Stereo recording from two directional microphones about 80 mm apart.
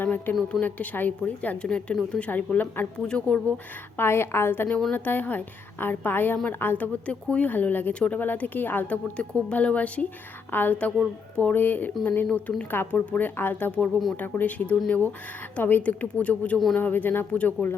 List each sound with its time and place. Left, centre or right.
0.0 s a sound: left
0.6 s a woman's voice: left
3.1 s a woman's voice: centre
3.9 s a woman's voice: left